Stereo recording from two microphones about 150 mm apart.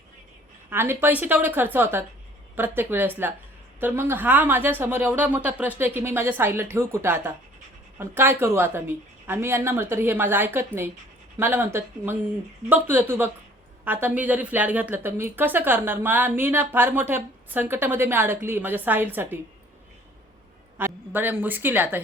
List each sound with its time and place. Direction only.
0.7 s a woman's voice: 15° right (ahead or behind)
20.7 s a woman's voice: 15° right (ahead or behind)